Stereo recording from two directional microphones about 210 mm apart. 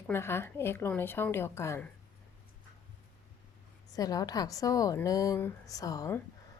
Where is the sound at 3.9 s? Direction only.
15° left (ahead or behind).